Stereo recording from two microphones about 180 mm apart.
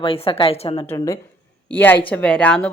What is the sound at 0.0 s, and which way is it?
Speech, 30° left (ahead or behind).